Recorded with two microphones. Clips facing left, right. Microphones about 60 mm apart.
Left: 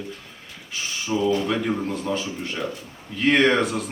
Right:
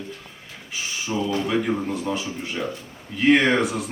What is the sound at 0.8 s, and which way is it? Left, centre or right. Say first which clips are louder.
A man's voice: left 2 dB; centre.